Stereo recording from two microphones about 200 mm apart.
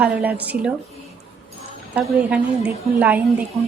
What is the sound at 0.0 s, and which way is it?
Speech, 5° right (ahead or behind).